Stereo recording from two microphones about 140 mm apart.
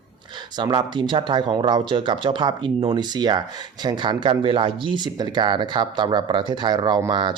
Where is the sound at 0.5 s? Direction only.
35° right (ahead or behind).